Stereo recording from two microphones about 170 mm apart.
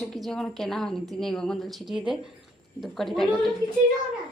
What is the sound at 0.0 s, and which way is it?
A woman's voice, 5° left (ahead or behind).